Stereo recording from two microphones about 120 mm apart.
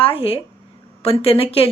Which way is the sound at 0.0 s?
50° left (ahead or behind).